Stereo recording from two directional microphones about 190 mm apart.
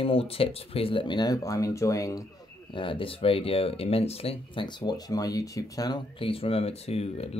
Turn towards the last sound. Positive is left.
turn(degrees=35)  # may be behind; listen again after turning